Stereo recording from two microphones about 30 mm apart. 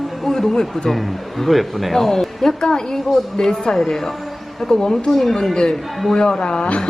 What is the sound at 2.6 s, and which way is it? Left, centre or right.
Speech, left.